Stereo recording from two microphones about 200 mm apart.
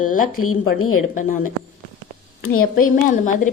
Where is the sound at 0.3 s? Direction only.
90° left.